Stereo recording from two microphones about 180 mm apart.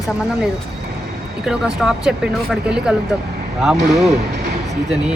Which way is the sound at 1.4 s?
5° right (ahead or behind).